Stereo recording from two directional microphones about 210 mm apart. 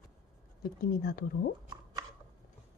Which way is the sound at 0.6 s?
45° left (ahead or behind).